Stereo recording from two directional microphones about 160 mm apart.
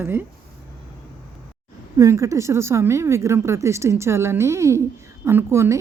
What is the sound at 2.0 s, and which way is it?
Speech, 20° right (ahead or behind).